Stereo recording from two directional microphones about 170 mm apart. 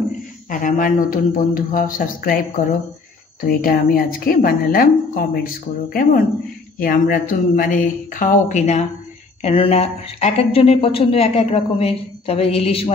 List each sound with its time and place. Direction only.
0.5 s a man's voice: 50° left (ahead or behind); by 12.9 s 35° left (ahead or behind)